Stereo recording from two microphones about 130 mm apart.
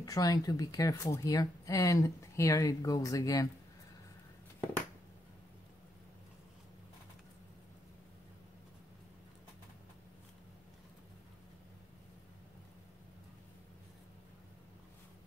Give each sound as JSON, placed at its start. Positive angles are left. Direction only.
{"t": 0.0, "sound": "speech", "side_deg": 30}